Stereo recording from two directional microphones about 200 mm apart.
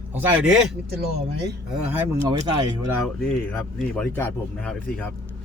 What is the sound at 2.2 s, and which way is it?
Speech, 20° right (ahead or behind).